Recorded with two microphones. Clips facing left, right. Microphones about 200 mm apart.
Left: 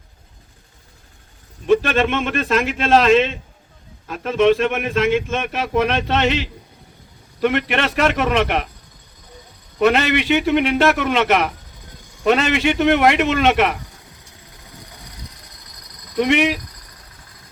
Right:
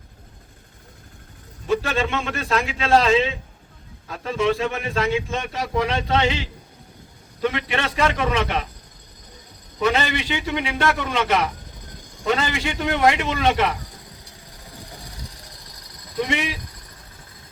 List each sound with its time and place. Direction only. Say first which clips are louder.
1.6 s a man's voice: left 6 dB; 70° left (ahead or behind)
9.8 s a man's voice: left 6 dB; 65° left (ahead or behind)
16.1 s a man's voice: left 8 dB; 70° left (ahead or behind)